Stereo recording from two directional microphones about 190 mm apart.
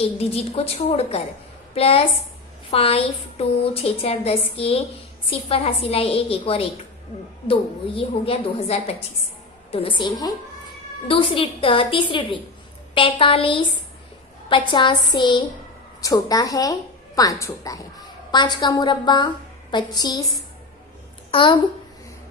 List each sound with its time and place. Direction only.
0.0 s a woman's voice: 35° left (ahead or behind)
7.9 s a woman's voice: 30° left (ahead or behind)
21.2 s a woman's voice: 25° left (ahead or behind)